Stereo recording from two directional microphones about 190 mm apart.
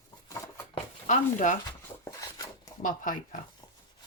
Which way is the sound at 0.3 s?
15° left (ahead or behind).